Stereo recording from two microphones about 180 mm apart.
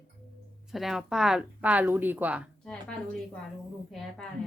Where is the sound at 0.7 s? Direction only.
Centre (ahead or behind).